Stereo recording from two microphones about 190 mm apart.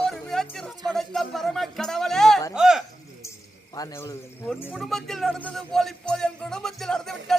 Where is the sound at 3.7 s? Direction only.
15° left (ahead or behind).